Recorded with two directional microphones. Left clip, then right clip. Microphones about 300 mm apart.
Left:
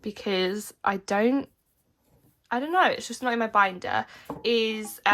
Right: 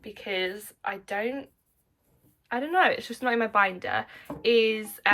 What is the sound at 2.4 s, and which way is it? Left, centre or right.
A woman's voice, centre.